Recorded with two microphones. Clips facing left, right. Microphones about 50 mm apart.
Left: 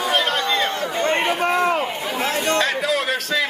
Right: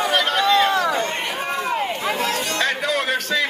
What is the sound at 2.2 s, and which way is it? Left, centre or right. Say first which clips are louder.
Chatter: left 2 dB; left.